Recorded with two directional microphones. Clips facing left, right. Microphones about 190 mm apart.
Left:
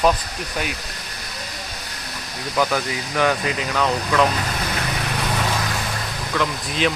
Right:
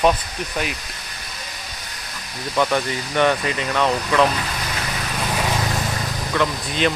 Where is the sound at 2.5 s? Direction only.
Centre (ahead or behind).